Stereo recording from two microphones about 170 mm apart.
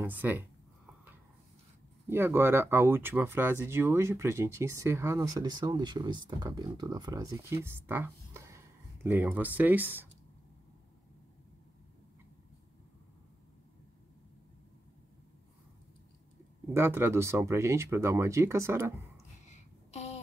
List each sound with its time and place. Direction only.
0.0 s speech: 10° right (ahead or behind)
2.0 s speech: 15° right (ahead or behind)
16.6 s speech: 15° right (ahead or behind)
19.4 s a sound: 40° left (ahead or behind)